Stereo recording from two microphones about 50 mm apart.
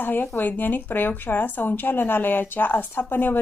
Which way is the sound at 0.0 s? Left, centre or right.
Left.